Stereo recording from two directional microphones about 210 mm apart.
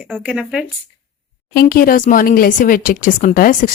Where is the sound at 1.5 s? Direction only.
45° left (ahead or behind).